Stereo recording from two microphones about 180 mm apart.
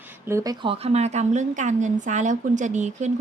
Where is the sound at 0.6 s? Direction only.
30° right (ahead or behind).